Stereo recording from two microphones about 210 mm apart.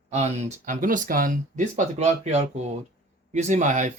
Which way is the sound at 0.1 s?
30° right (ahead or behind).